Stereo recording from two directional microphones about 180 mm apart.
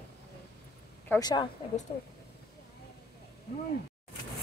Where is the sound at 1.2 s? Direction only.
25° left (ahead or behind).